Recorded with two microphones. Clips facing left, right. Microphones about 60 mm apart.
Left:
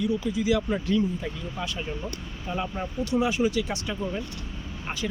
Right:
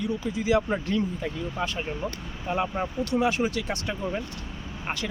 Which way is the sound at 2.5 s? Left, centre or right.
Right.